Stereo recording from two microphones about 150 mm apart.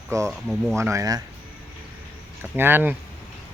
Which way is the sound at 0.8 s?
20° right (ahead or behind).